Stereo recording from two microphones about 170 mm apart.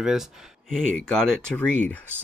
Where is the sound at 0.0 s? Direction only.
5° right (ahead or behind).